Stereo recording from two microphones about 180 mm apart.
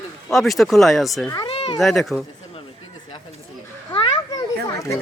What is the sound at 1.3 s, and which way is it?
Speech, 25° left (ahead or behind).